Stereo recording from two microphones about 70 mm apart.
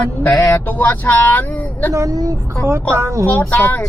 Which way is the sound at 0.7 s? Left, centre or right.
Left.